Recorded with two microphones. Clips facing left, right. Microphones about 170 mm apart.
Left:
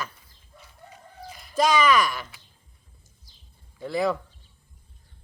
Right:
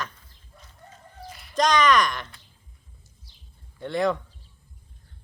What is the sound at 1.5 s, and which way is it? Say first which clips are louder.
Speech: even; 5° left (ahead or behind).